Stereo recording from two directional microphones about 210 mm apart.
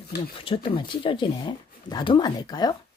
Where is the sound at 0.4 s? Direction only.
25° left (ahead or behind).